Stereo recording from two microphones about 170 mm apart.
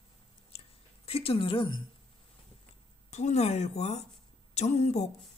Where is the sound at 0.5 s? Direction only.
35° left (ahead or behind).